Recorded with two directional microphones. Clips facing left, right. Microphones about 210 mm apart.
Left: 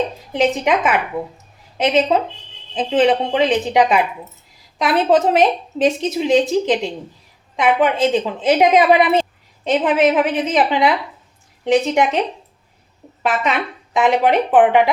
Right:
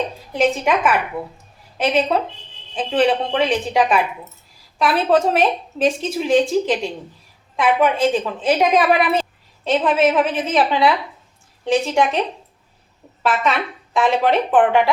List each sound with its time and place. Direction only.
0.3 s a woman's voice: 20° left (ahead or behind)
7.8 s a woman's voice: 20° left (ahead or behind)
13.2 s speech: 15° left (ahead or behind)